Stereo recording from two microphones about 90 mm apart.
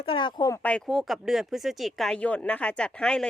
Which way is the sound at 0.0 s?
75° left (ahead or behind).